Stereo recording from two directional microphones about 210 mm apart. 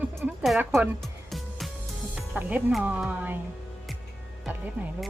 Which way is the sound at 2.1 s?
5° right (ahead or behind).